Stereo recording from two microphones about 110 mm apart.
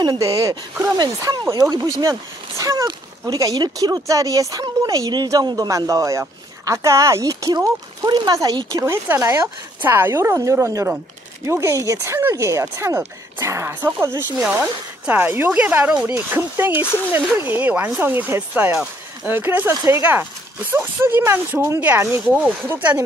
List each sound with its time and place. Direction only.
0.0 s speech: 35° right (ahead or behind); by 16.2 s 10° right (ahead or behind)
16.3 s speech: 20° right (ahead or behind)